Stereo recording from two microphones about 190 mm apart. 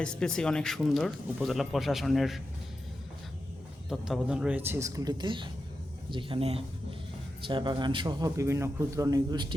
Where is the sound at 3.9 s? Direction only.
5° right (ahead or behind).